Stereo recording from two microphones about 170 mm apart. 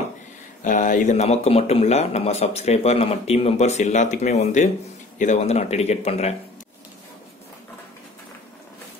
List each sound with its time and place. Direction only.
0.7 s a man's voice: 50° left (ahead or behind)